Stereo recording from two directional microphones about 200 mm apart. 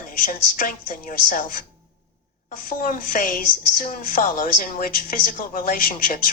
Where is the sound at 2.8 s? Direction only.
45° left (ahead or behind).